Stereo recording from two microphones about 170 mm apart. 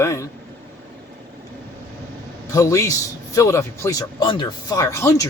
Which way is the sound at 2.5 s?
20° left (ahead or behind).